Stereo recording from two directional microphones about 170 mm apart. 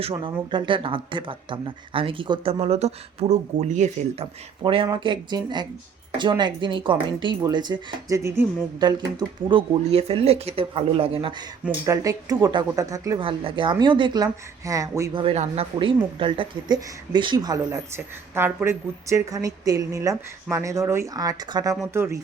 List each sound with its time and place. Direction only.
0.0 s speech: 30° right (ahead or behind)
11.9 s speech: 20° right (ahead or behind)
13.2 s speech: 30° right (ahead or behind)
15.2 s a woman's voice: 35° right (ahead or behind); by 22.2 s 15° right (ahead or behind)